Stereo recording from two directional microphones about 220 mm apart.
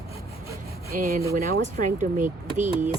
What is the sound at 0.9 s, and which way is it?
Speech, 40° right (ahead or behind).